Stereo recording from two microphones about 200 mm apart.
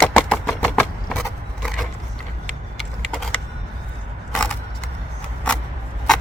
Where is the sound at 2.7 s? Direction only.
Centre (ahead or behind).